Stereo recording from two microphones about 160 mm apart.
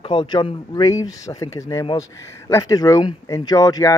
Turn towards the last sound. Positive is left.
turn(degrees=25)  # may be behind; listen again after turning